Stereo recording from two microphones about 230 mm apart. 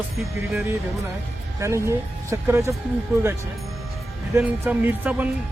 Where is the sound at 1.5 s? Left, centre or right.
Centre.